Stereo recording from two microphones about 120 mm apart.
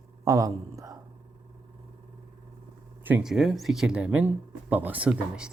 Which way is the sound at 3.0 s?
15° right (ahead or behind).